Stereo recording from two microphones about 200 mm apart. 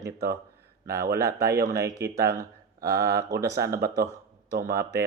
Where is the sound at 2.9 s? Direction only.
50° right (ahead or behind).